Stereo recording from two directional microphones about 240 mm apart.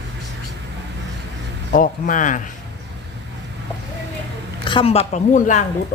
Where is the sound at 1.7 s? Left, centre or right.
Left.